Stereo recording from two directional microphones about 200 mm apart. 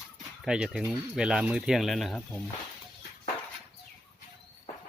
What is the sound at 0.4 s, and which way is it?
Speech, 5° right (ahead or behind).